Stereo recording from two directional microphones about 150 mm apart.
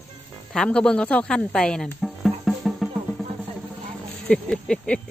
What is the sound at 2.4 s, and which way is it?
Music, centre (ahead or behind).